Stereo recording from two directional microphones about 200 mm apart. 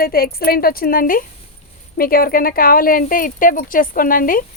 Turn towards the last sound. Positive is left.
turn(degrees=45)  # may be behind; listen again after turning